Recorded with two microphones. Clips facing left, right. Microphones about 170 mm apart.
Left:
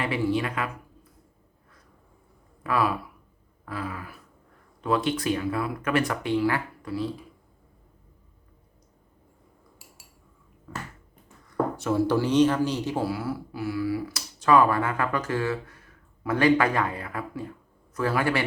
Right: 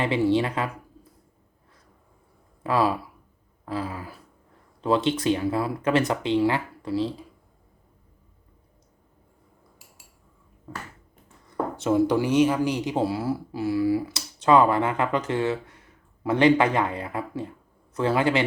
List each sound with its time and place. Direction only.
0.0 s speech: 25° right (ahead or behind)
2.6 s speech: 30° right (ahead or behind)
11.8 s speech: 20° right (ahead or behind)